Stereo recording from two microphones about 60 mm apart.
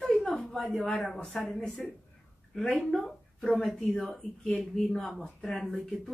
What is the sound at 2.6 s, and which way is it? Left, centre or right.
Speech, centre.